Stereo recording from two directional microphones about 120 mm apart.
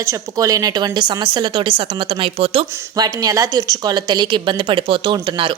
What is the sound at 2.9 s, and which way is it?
A woman's voice, 30° right (ahead or behind).